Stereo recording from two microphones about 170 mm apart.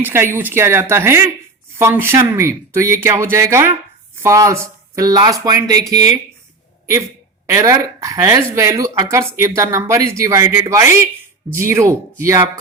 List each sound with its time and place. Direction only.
0.0 s speech: 15° right (ahead or behind)
7.4 s speech: 20° right (ahead or behind)